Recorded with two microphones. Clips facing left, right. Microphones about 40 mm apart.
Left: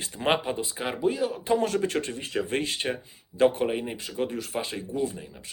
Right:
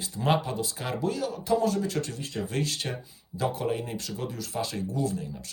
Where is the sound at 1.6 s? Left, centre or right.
Left.